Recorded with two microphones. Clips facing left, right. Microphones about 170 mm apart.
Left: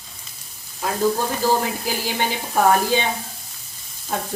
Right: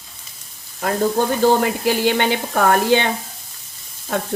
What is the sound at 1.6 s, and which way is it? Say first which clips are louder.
Speech: right 8 dB; 65° right (ahead or behind).